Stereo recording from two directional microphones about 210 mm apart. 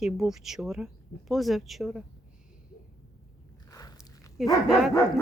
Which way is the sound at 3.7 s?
15° left (ahead or behind).